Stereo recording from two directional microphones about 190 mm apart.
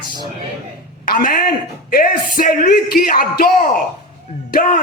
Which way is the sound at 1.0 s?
50° left (ahead or behind).